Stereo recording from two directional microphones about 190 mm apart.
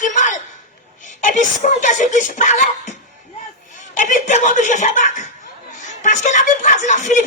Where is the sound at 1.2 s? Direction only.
40° left (ahead or behind).